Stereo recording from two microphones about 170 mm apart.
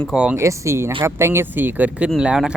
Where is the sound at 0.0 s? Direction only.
5° right (ahead or behind).